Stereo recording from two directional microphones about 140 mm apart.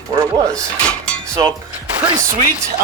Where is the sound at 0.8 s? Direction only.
5° left (ahead or behind).